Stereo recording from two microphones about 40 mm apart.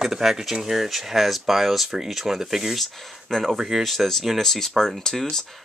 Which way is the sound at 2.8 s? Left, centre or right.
Centre.